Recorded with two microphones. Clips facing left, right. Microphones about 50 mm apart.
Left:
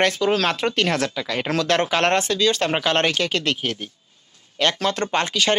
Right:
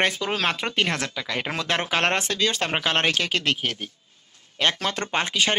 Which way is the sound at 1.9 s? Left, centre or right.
Right.